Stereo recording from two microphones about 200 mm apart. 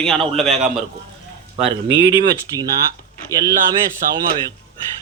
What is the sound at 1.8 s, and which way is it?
Speech, 60° right (ahead or behind).